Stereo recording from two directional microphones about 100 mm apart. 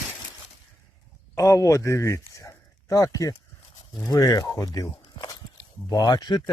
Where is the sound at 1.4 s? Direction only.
30° left (ahead or behind).